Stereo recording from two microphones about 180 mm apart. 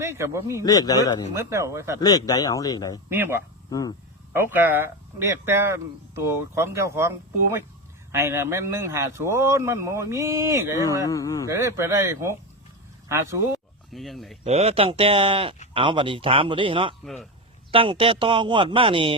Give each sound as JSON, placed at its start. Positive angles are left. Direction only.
{"t": 0.0, "sound": "speech", "side_deg": -15}
{"t": 0.6, "sound": "a man's voice", "side_deg": 20}
{"t": 1.3, "sound": "speech", "side_deg": -15}
{"t": 2.0, "sound": "a man's voice", "side_deg": 20}
{"t": 3.1, "sound": "speech", "side_deg": -10}
{"t": 3.7, "sound": "speech", "side_deg": 20}
{"t": 4.4, "sound": "speech", "side_deg": -10}
{"t": 8.1, "sound": "speech", "side_deg": -15}
{"t": 11.1, "sound": "a man's voice", "side_deg": 20}
{"t": 11.4, "sound": "speech", "side_deg": -15}
{"t": 13.9, "sound": "speech", "side_deg": 0}
{"t": 14.4, "sound": "speech", "side_deg": -35}